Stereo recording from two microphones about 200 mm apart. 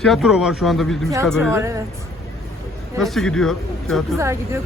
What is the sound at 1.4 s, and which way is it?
Speech, 15° right (ahead or behind).